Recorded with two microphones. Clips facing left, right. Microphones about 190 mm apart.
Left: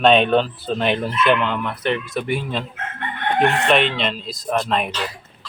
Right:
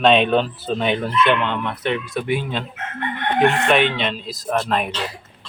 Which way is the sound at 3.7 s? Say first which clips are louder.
Even; centre (ahead or behind).